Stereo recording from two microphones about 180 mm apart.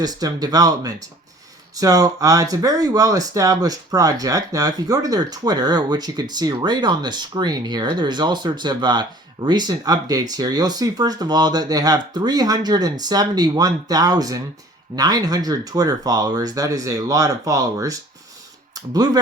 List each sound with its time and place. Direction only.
0.0 s speech: 20° right (ahead or behind)